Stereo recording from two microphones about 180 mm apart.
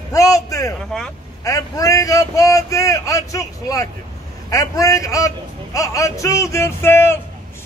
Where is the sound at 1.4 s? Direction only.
20° left (ahead or behind).